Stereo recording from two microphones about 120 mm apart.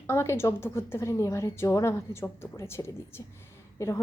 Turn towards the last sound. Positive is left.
turn(degrees=25)  # may be behind; listen again after turning